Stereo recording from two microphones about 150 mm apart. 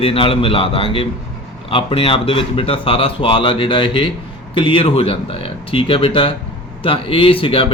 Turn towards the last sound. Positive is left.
turn(degrees=35)  # may be behind; listen again after turning